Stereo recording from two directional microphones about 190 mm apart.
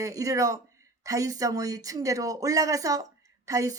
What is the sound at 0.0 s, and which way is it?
Speech, 15° right (ahead or behind).